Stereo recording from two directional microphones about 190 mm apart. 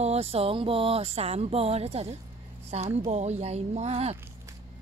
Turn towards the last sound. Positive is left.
turn(degrees=-35)  # may be behind; listen again after turning